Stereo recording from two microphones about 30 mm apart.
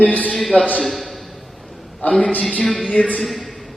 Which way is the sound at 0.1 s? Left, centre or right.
Left.